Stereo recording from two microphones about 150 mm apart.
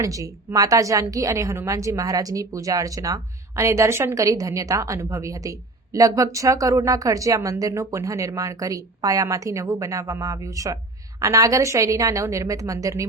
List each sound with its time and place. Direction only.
0.0 s a woman's voice: 20° right (ahead or behind)